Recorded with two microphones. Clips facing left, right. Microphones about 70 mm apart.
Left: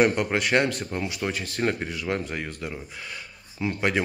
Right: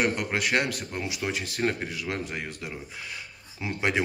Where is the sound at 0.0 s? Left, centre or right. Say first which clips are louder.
Left 5 dB; centre.